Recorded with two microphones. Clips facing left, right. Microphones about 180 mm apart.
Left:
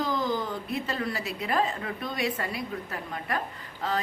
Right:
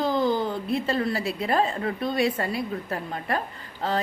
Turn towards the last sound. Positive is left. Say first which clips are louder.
# right 3 dB
turn(degrees=-30)  # may be behind; listen again after turning